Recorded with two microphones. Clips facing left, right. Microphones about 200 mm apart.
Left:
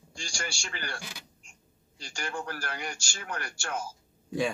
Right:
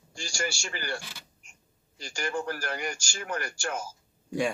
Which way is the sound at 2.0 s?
5° right (ahead or behind).